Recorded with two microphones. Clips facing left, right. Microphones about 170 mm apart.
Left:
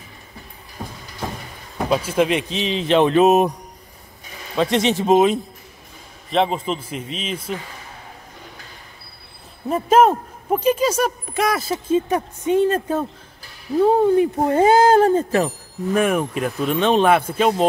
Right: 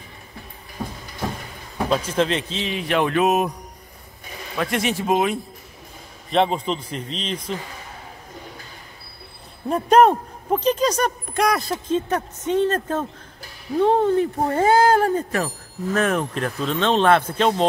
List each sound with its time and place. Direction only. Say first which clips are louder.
1.9 s speech: left 3 dB; 10° left (ahead or behind); by 3.5 s 25° left (ahead or behind)
4.6 s speech: left 5 dB; 25° left (ahead or behind)
6.3 s speech: even; centre (ahead or behind)
9.7 s speech: even; centre (ahead or behind); by 15.5 s 25° left (ahead or behind)
15.9 s speech: left 3 dB; 10° left (ahead or behind)